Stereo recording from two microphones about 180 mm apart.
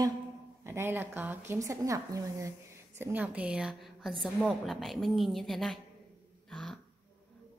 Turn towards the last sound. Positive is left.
turn(degrees=0)  # may be behind; listen again after turning